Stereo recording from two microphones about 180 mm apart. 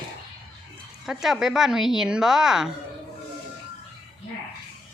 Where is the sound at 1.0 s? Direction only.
Centre (ahead or behind).